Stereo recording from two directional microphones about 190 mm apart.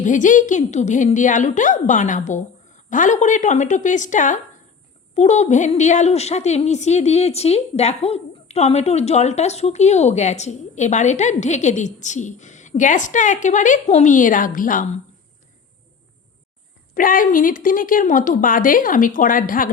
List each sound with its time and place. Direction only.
0.0 s a woman's voice: 40° left (ahead or behind)
16.9 s a woman's voice: 45° left (ahead or behind)